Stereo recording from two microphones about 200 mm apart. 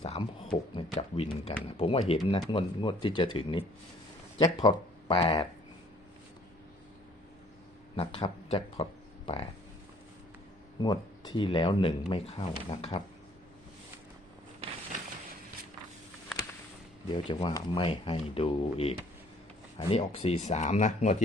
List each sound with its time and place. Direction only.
0.0 s a sound: 30° left (ahead or behind)
1.6 s speech: 30° left (ahead or behind)
7.9 s speech: 30° left (ahead or behind)
10.8 s speech: 20° left (ahead or behind)
17.1 s speech: 25° left (ahead or behind)